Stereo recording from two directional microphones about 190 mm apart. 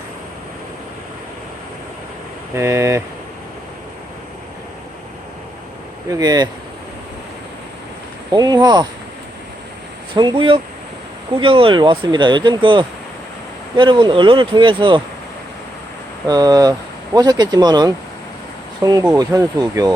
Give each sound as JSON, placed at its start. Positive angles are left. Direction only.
{"t": 2.6, "sound": "speech", "side_deg": -15}
{"t": 6.1, "sound": "speech", "side_deg": -20}
{"t": 8.3, "sound": "speech", "side_deg": -20}
{"t": 10.2, "sound": "speech", "side_deg": -25}
{"t": 16.2, "sound": "speech", "side_deg": -20}